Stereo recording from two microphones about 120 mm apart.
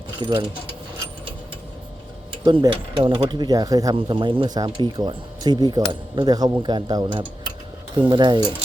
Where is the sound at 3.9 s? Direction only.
40° right (ahead or behind).